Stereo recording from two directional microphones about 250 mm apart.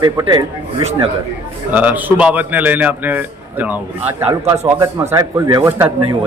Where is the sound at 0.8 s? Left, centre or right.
Right.